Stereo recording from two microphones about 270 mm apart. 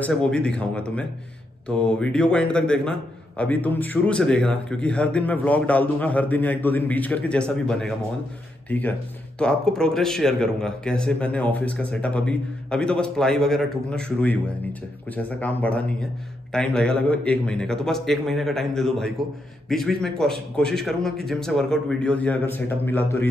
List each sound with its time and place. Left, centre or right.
0.0 s a man's voice: centre